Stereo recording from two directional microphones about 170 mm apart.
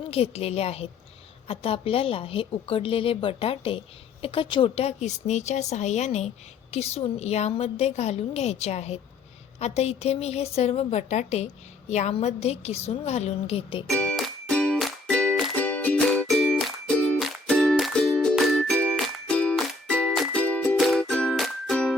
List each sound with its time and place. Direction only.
0.1 s a woman's voice: 35° left (ahead or behind)
13.8 s music: 5° left (ahead or behind)